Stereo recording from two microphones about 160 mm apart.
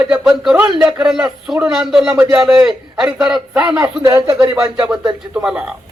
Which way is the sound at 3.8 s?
20° right (ahead or behind).